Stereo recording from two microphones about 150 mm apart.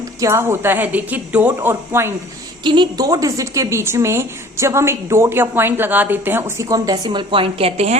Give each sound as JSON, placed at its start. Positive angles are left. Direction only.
{"t": 0.2, "sound": "a woman's voice", "side_deg": -20}
{"t": 2.6, "sound": "a woman's voice", "side_deg": -30}